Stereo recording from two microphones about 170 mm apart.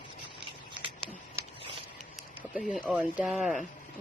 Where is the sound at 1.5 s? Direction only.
35° right (ahead or behind).